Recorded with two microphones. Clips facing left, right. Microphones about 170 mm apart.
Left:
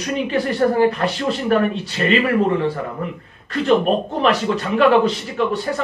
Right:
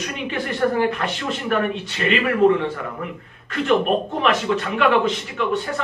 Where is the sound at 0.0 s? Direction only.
35° left (ahead or behind).